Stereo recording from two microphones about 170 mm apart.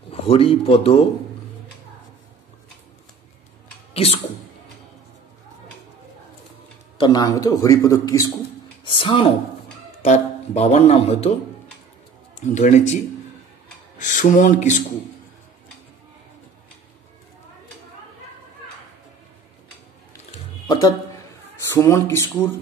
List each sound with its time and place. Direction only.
0.1 s speech: 35° left (ahead or behind)
3.9 s a sound: 35° left (ahead or behind)
7.0 s a man's voice: 20° left (ahead or behind)
8.8 s speech: 30° left (ahead or behind)
12.4 s speech: 45° left (ahead or behind)
20.6 s a sound: 20° left (ahead or behind)
21.6 s speech: 15° left (ahead or behind)